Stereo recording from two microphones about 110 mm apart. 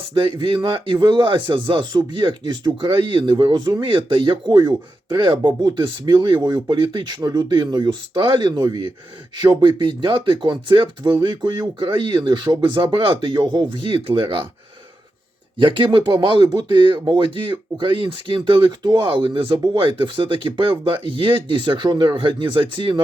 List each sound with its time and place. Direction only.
0.1 s speech: 50° right (ahead or behind)
15.5 s speech: 50° right (ahead or behind)